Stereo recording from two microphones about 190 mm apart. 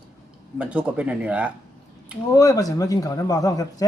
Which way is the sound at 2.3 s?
20° left (ahead or behind).